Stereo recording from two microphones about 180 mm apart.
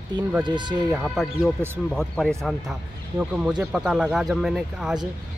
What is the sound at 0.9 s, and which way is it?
Speech, centre (ahead or behind).